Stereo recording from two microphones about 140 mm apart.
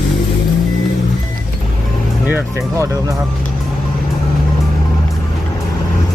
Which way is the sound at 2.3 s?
20° right (ahead or behind).